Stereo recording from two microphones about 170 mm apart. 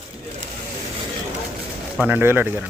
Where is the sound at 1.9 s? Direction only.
10° right (ahead or behind).